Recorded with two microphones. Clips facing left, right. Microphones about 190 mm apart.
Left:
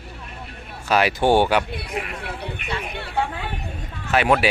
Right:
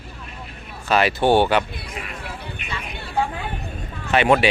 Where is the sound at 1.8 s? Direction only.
65° left (ahead or behind).